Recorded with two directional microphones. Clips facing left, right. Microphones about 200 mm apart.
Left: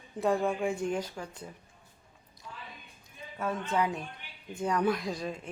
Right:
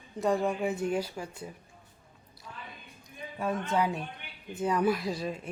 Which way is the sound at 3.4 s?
15° right (ahead or behind).